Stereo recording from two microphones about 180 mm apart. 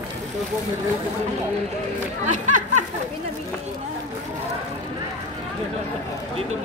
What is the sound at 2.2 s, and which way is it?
Speech, 45° right (ahead or behind).